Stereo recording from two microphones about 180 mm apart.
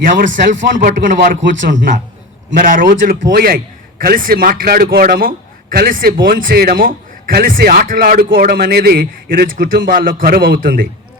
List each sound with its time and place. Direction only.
0.0 s speech: 50° right (ahead or behind)
2.6 s a man's voice: 50° right (ahead or behind)